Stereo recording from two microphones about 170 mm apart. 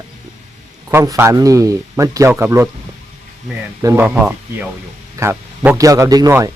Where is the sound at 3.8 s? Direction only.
15° right (ahead or behind).